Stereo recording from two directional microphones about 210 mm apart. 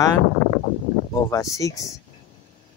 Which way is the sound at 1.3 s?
15° left (ahead or behind).